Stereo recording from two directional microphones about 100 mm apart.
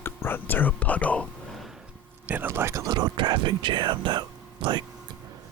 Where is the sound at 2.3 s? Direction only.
20° right (ahead or behind).